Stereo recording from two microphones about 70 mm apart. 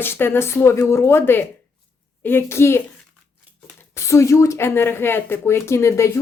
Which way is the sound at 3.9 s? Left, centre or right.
Left.